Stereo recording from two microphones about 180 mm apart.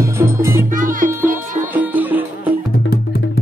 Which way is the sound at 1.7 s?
10° right (ahead or behind).